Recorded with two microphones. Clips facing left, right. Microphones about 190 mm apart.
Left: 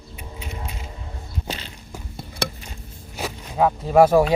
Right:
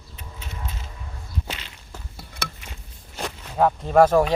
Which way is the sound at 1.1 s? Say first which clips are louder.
Left 2 dB; 35° left (ahead or behind).